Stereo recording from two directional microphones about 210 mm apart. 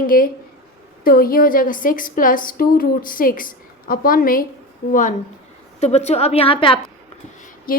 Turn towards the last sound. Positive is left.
turn(degrees=40)  # may be behind; listen again after turning